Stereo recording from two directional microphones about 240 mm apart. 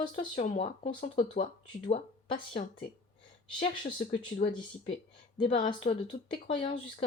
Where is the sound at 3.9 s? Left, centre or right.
Left.